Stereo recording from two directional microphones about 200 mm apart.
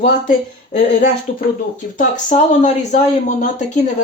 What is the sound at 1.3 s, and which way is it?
Speech, 35° left (ahead or behind).